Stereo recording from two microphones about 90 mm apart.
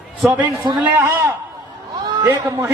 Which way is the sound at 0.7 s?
45° right (ahead or behind).